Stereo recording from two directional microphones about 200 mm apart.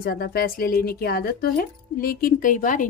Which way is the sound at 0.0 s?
50° left (ahead or behind).